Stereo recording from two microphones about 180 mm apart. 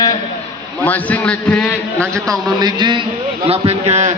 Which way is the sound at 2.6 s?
25° right (ahead or behind).